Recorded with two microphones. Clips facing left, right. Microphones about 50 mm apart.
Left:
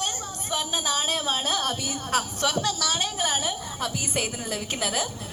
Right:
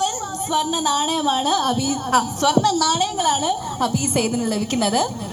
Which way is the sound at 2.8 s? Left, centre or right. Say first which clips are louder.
Right 8 dB; left.